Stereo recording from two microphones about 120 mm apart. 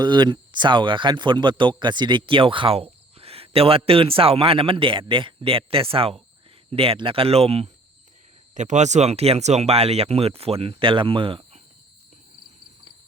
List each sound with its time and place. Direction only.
0.0 s speech: 40° right (ahead or behind); by 7.7 s 55° right (ahead or behind)
8.5 s speech: 80° right; by 11.4 s 45° right (ahead or behind)